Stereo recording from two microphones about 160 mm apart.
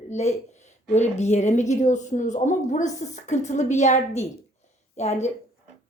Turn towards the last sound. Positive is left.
turn(degrees=45)  # may be behind; listen again after turning